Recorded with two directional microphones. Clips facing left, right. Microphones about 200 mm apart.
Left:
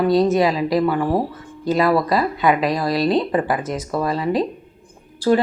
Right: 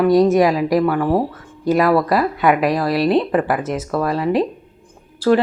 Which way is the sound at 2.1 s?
10° right (ahead or behind).